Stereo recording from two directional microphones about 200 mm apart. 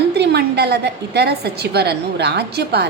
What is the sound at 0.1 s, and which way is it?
A woman's voice, 55° right (ahead or behind).